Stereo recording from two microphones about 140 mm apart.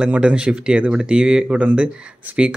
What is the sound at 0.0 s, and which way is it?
Speech, 5° right (ahead or behind).